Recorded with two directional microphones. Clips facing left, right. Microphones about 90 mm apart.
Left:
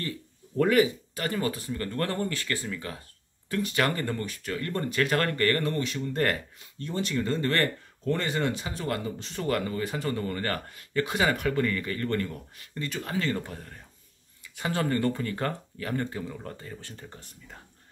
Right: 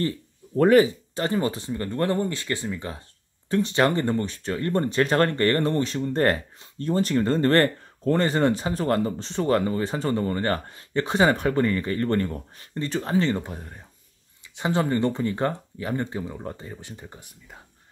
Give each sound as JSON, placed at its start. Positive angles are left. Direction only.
{"t": 0.6, "sound": "speech", "side_deg": -35}
{"t": 9.3, "sound": "speech", "side_deg": -30}